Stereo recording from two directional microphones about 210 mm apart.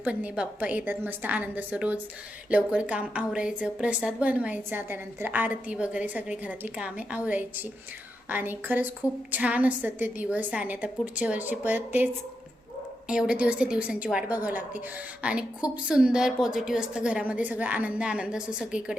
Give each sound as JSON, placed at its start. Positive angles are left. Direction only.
{"t": 0.0, "sound": "a woman's voice", "side_deg": -5}
{"t": 13.1, "sound": "a woman's voice", "side_deg": -5}